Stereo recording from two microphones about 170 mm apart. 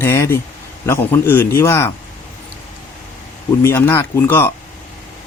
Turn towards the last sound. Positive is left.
turn(degrees=15)  # may be behind; listen again after turning